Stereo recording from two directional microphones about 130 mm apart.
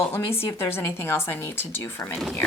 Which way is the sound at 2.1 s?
5° left (ahead or behind).